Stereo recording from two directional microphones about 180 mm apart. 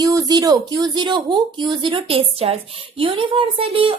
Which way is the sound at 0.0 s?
20° right (ahead or behind).